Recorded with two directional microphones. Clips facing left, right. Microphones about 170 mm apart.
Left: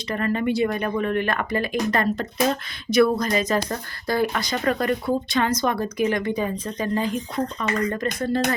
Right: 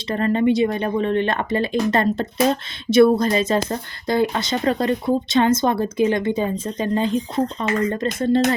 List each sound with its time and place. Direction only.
0.1 s speech: 30° right (ahead or behind)